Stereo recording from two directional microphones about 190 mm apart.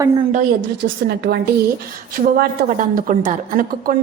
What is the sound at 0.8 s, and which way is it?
A woman's voice, 60° right (ahead or behind).